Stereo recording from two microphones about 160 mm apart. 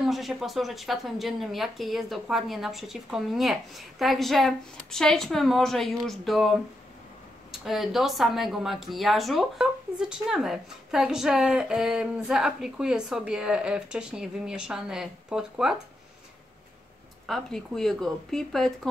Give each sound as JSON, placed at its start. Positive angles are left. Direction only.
{"t": 0.1, "sound": "speech", "side_deg": 0}
{"t": 7.6, "sound": "speech", "side_deg": 0}
{"t": 17.3, "sound": "speech", "side_deg": 0}